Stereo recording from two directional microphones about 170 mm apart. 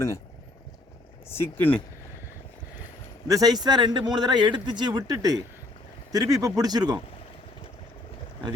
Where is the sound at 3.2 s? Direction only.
20° right (ahead or behind).